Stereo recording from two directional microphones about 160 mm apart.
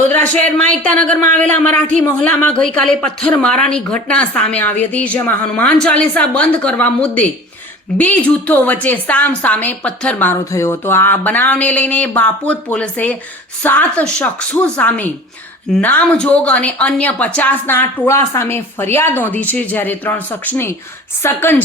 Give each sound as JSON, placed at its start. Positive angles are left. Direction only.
{"t": 0.8, "sound": "speech", "side_deg": 5}